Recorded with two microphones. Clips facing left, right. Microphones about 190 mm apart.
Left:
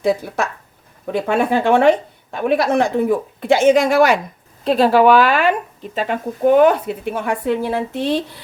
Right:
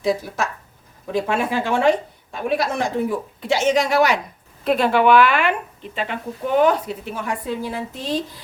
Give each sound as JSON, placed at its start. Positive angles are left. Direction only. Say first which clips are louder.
{"t": 0.4, "sound": "speech", "louder": "left 3 dB", "side_deg": 60}
{"t": 4.6, "sound": "speech", "louder": "left 4 dB", "side_deg": 30}